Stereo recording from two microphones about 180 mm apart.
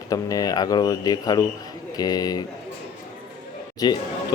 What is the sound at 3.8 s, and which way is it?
Speech, 20° left (ahead or behind).